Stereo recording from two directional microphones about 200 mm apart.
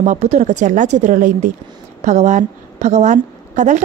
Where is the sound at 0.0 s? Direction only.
35° right (ahead or behind).